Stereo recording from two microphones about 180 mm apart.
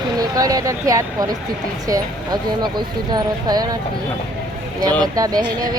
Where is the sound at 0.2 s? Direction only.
20° right (ahead or behind).